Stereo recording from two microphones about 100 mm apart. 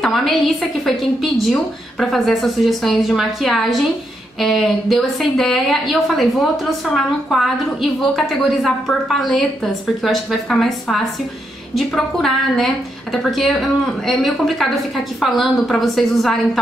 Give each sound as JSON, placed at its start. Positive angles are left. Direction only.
{"t": 0.0, "sound": "a woman's voice", "side_deg": 0}